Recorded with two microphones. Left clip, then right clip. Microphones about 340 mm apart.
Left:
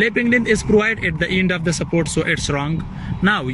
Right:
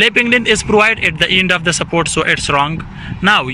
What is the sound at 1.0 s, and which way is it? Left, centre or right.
Speech, right.